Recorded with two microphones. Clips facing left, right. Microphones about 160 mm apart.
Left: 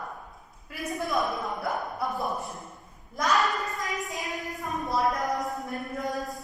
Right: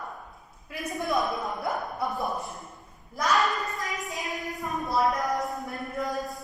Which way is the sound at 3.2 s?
Centre (ahead or behind).